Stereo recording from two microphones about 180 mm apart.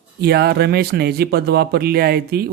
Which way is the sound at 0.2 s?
60° right (ahead or behind).